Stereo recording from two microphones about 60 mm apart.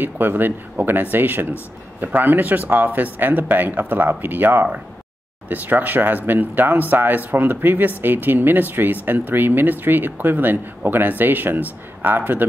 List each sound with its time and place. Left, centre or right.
0.0 s speech: right